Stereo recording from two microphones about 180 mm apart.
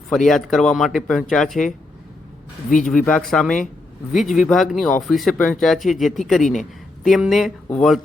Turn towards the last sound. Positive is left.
turn(degrees=5)  # may be behind; listen again after turning